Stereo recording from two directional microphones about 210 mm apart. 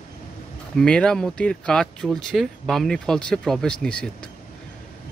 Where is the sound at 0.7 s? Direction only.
5° left (ahead or behind).